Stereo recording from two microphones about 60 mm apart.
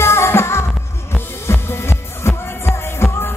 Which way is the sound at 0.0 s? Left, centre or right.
Left.